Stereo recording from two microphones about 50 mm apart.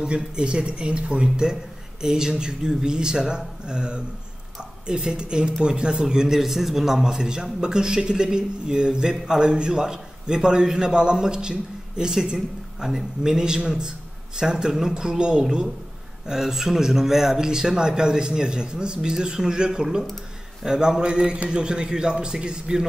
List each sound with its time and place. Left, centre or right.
0.0 s a man's voice: centre